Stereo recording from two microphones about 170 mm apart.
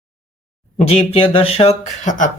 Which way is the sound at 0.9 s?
35° left (ahead or behind).